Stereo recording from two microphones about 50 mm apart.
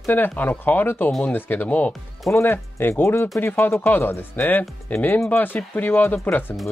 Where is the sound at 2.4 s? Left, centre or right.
Left.